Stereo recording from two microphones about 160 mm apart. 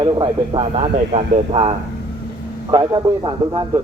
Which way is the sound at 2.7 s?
25° right (ahead or behind).